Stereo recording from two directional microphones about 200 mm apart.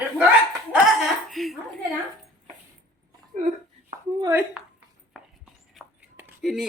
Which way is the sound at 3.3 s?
35° right (ahead or behind).